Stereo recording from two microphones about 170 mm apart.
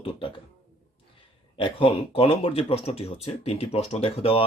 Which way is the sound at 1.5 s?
30° left (ahead or behind).